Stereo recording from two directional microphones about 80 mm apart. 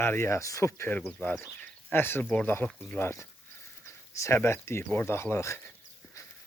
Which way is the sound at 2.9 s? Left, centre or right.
Left.